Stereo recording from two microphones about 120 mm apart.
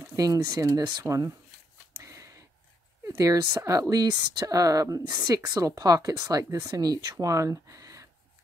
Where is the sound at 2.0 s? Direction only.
25° right (ahead or behind).